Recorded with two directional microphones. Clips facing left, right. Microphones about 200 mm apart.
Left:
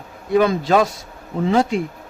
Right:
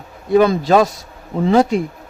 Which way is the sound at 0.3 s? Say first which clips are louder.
Right 3 dB; 40° right (ahead or behind).